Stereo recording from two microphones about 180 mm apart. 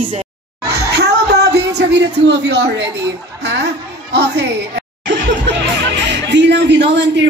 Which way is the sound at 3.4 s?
70° right (ahead or behind).